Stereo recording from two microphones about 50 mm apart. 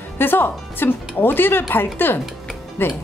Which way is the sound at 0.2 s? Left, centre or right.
Left.